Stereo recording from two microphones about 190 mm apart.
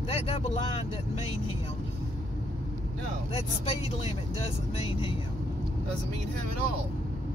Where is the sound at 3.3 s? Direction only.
30° left (ahead or behind).